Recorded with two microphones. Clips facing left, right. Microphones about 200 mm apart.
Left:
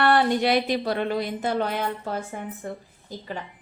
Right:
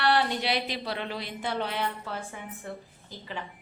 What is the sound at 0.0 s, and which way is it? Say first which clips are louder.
Speech: left 6 dB; 50° left (ahead or behind).